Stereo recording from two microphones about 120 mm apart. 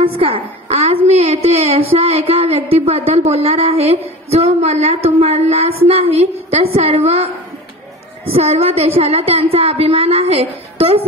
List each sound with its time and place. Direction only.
0.0 s a woman's voice: 50° right (ahead or behind)
8.3 s a woman's voice: 55° right (ahead or behind)